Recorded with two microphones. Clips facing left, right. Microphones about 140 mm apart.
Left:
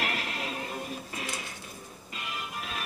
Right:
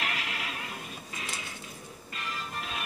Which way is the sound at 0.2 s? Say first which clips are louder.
Left 3 dB; 35° left (ahead or behind).